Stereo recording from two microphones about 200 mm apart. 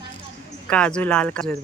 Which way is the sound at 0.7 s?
5° left (ahead or behind).